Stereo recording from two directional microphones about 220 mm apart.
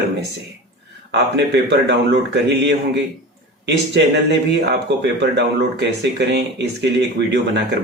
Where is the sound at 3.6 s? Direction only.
50° right (ahead or behind).